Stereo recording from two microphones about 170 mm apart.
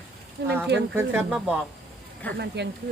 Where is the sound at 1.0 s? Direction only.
10° right (ahead or behind).